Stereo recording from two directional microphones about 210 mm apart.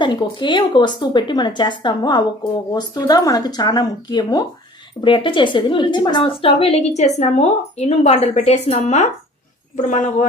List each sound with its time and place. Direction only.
0.0 s a woman's voice: 20° left (ahead or behind)